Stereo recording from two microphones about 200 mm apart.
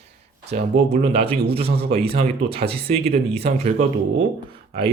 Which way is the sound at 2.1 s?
50° right (ahead or behind).